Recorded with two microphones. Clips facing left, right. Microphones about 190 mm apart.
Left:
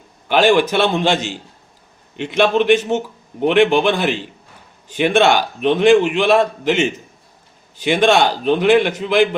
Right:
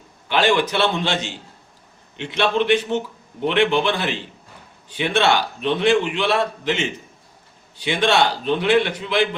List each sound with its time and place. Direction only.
0.3 s a man's voice: 50° left (ahead or behind)
7.9 s a man's voice: 50° left (ahead or behind)